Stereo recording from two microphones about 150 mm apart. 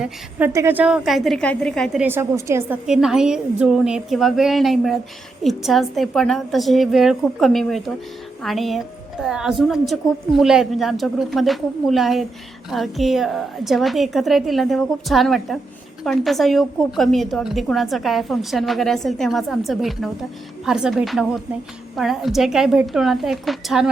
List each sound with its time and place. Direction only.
0.0 s a woman's voice: 10° right (ahead or behind)
2.0 s a woman's voice: 15° right (ahead or behind)
2.8 s a woman's voice: 5° right (ahead or behind)